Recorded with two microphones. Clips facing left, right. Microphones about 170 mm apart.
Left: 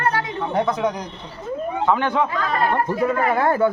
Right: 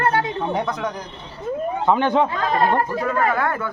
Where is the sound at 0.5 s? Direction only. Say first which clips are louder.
Left 4 dB; 5° left (ahead or behind).